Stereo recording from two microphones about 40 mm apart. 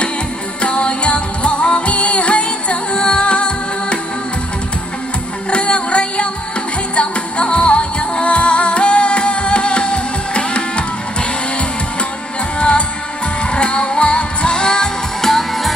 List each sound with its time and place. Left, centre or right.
0.6 s music: left
5.5 s music: left
12.5 s music: left
15.2 s music: centre